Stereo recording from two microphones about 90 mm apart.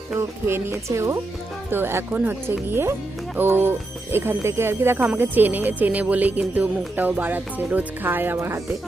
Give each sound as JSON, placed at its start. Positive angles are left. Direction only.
{"t": 0.2, "sound": "speech", "side_deg": -30}